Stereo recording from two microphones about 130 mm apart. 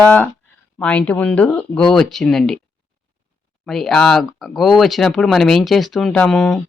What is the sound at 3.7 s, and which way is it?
Speech, centre (ahead or behind).